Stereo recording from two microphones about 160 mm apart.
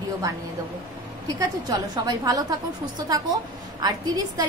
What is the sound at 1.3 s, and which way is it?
A woman's voice, 25° right (ahead or behind).